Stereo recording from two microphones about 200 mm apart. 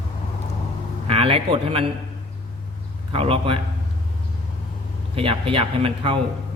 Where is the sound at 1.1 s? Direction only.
30° right (ahead or behind).